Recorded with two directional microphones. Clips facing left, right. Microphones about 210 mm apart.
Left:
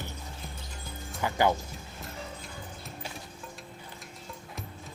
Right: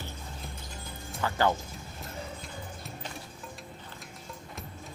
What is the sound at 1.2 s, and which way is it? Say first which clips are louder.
Music: left 1 dB; 15° left (ahead or behind).